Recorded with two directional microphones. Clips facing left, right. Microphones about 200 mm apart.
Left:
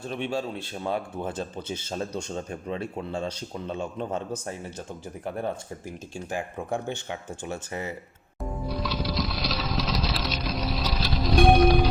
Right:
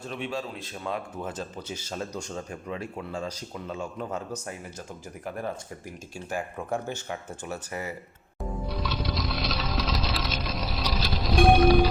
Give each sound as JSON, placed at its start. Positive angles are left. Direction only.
{"t": 0.1, "sound": "speech", "side_deg": 30}
{"t": 6.8, "sound": "speech", "side_deg": 20}
{"t": 8.4, "sound": "music", "side_deg": 0}